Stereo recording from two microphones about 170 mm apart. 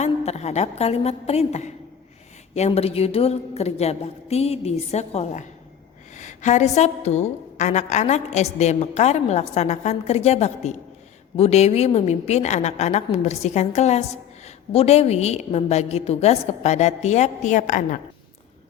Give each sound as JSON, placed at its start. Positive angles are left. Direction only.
{"t": 0.0, "sound": "a woman's voice", "side_deg": 40}